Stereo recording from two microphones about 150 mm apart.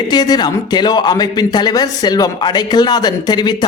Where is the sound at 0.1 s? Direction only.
25° left (ahead or behind).